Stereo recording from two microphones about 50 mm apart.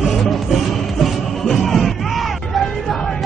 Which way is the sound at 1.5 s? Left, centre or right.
Centre.